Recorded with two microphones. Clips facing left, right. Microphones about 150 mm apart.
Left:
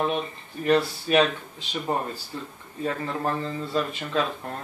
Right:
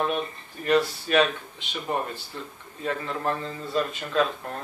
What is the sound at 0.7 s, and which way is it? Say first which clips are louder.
Speech: left 1 dB; 30° left (ahead or behind).